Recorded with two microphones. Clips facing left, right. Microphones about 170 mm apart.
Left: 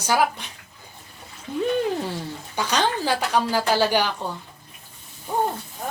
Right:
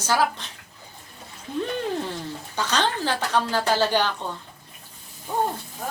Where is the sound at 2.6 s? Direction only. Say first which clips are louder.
Left 1 dB; 10° left (ahead or behind).